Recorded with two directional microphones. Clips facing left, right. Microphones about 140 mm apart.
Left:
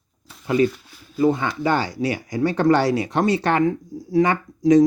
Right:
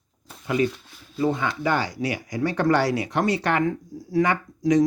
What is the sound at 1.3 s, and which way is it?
Speech, 30° left (ahead or behind).